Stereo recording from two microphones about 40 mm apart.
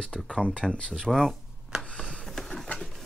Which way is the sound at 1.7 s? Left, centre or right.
Right.